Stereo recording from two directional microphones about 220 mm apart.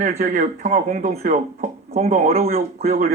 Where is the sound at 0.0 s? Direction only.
30° right (ahead or behind).